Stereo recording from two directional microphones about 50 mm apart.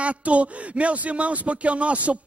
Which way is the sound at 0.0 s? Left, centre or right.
Right.